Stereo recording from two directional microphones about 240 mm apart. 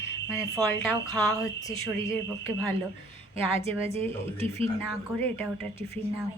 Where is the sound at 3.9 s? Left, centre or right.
Right.